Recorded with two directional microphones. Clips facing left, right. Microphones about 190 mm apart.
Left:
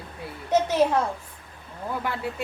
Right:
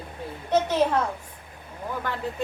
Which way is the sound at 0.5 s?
10° left (ahead or behind).